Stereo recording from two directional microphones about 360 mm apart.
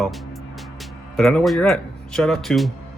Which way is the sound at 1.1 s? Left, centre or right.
Centre.